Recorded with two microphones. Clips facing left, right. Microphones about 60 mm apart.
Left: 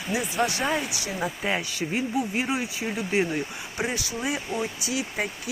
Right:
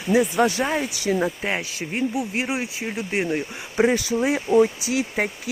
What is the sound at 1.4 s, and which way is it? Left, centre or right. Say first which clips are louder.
Speech: right 1 dB; right.